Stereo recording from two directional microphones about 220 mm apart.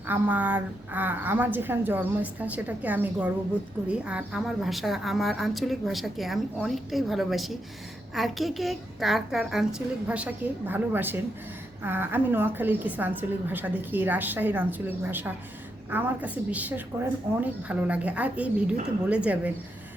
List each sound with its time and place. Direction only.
0.1 s a woman's voice: 10° right (ahead or behind)